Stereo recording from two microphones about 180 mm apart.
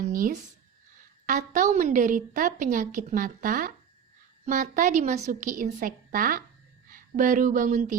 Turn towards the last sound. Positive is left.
turn(degrees=-45)  # may be behind; listen again after turning